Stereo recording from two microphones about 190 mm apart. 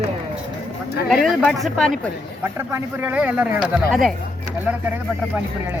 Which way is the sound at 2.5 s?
10° right (ahead or behind).